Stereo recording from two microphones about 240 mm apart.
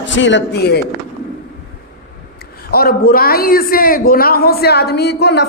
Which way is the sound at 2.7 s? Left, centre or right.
Left.